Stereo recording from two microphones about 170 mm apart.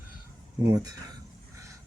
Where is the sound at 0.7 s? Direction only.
20° right (ahead or behind).